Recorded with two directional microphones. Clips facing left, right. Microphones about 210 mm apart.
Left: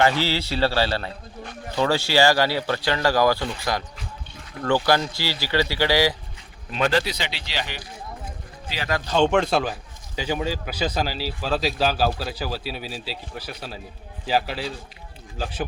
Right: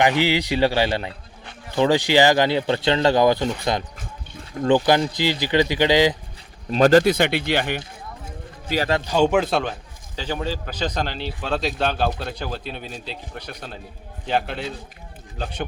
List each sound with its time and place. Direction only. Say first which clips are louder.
0.0 s a man's voice: right 2 dB; 15° right (ahead or behind)
6.7 s speech: right 8 dB; 40° right (ahead or behind)
9.0 s speech: left 1 dB; 10° right (ahead or behind)
10.2 s speech: left 1 dB; 10° left (ahead or behind)